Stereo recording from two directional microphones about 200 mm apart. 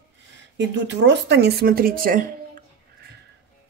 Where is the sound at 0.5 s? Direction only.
60° right (ahead or behind); by 2.6 s 45° right (ahead or behind).